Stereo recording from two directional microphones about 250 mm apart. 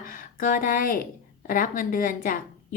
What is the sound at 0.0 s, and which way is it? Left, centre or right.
A woman's voice, left.